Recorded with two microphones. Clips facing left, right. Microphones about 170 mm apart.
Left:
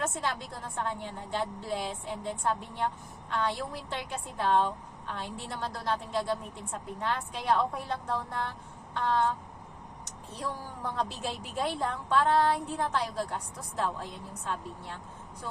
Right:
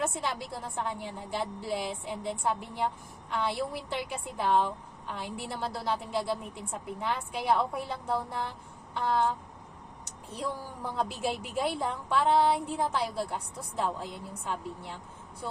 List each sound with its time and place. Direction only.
0.0 s a woman's voice: 10° right (ahead or behind)
10.3 s a woman's voice: 10° right (ahead or behind)